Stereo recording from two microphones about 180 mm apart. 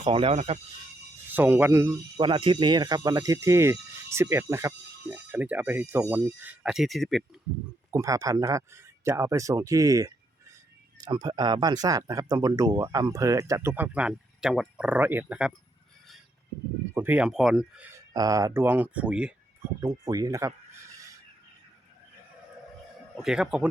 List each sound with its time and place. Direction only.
0.0 s speech: 30° right (ahead or behind)
1.3 s speech: 10° right (ahead or behind)
2.1 s speech: 25° right (ahead or behind); by 7.3 s centre (ahead or behind)
7.9 s speech: 20° right (ahead or behind)
16.9 s speech: 10° right (ahead or behind)
18.1 s speech: 20° right (ahead or behind)
19.8 s speech: 20° right (ahead or behind)
23.1 s speech: 5° right (ahead or behind)